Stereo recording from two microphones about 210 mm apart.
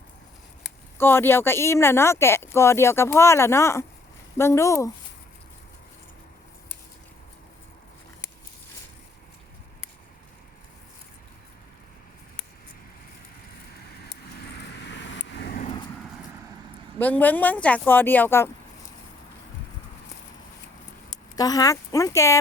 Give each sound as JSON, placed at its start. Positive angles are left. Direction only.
{"t": 0.9, "sound": "speech", "side_deg": 10}
{"t": 14.8, "sound": "vehicle", "side_deg": 60}
{"t": 15.6, "sound": "vehicle", "side_deg": 25}
{"t": 17.0, "sound": "speech", "side_deg": 10}
{"t": 21.3, "sound": "speech", "side_deg": 15}